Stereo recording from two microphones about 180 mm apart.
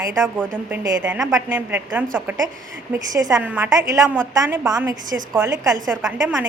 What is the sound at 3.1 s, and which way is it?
A woman's voice, 20° right (ahead or behind).